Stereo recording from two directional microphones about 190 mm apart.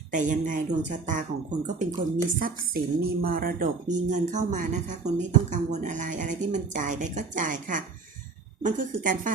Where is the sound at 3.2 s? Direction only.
50° right (ahead or behind).